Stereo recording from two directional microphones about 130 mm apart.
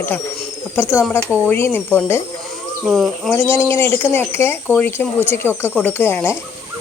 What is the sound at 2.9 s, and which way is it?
Speech, centre (ahead or behind).